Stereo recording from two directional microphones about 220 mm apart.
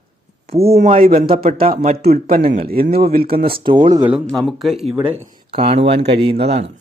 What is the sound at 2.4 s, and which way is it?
Speech, 25° right (ahead or behind).